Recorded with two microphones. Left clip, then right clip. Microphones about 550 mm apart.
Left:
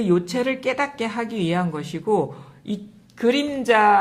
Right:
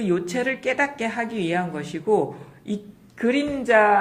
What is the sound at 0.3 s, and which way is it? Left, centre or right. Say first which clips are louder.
Speech: even; left.